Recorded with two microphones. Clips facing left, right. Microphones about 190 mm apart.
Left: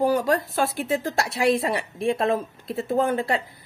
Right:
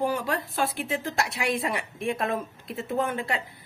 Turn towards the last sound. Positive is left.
turn(degrees=35)  # may be behind; listen again after turning